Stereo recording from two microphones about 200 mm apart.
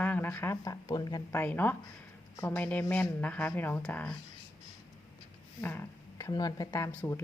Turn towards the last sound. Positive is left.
turn(degrees=15)  # may be behind; listen again after turning